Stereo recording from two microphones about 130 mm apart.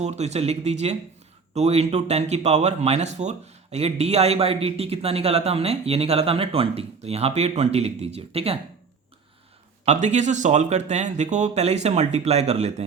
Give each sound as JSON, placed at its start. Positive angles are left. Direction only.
{"t": 0.0, "sound": "speech", "side_deg": -60}
{"t": 9.8, "sound": "speech", "side_deg": -65}